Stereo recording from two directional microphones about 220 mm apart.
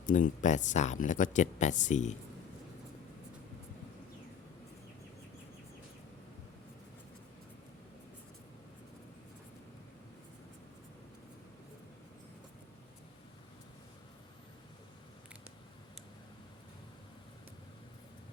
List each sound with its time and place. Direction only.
0.0 s speech: 35° left (ahead or behind)